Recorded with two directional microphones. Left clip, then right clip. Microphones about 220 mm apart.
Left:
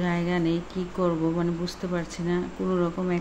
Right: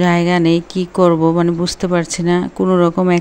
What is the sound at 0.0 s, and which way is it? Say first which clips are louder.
Speech: right 13 dB; 45° right (ahead or behind).